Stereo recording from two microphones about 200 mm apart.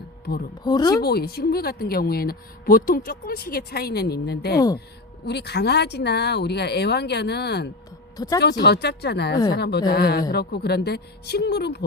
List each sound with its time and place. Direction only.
0.3 s speech: 50° left (ahead or behind)
0.6 s speech: 20° left (ahead or behind)
1.0 s speech: 50° left (ahead or behind)
8.1 s speech: 20° left (ahead or behind)
8.4 s speech: 55° left (ahead or behind)